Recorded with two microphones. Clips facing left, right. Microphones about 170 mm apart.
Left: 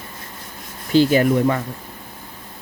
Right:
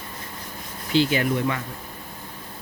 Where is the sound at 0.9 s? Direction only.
45° left (ahead or behind).